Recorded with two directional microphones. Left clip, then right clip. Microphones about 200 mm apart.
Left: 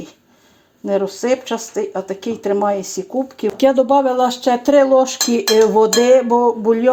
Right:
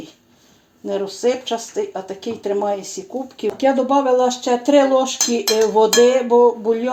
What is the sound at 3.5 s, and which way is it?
Speech, 50° left (ahead or behind).